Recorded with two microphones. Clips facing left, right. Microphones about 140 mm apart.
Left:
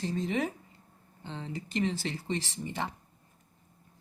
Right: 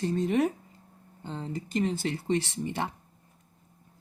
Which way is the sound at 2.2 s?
65° right (ahead or behind).